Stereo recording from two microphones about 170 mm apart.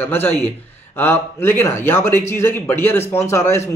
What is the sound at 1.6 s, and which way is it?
Speech, 10° left (ahead or behind).